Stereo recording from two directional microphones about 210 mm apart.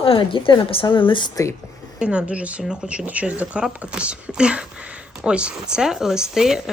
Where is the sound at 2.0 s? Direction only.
5° right (ahead or behind).